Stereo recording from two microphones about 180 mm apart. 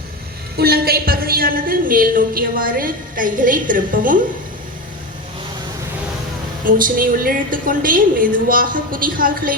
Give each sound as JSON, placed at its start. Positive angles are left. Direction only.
{"t": 0.5, "sound": "a woman's voice", "side_deg": -60}
{"t": 6.7, "sound": "a woman's voice", "side_deg": -50}